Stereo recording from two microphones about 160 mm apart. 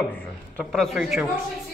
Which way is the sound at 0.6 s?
5° left (ahead or behind).